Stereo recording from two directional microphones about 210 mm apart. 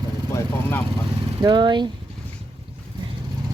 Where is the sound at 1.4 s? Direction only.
20° right (ahead or behind).